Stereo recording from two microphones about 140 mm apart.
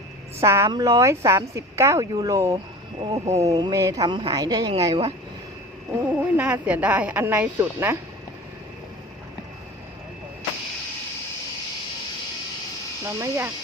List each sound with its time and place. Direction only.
0.3 s speech: 20° right (ahead or behind)
5.9 s speech: 15° right (ahead or behind)
13.1 s speech: 20° right (ahead or behind)